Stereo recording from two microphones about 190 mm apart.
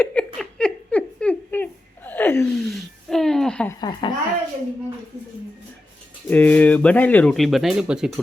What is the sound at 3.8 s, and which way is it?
Speech, 25° left (ahead or behind).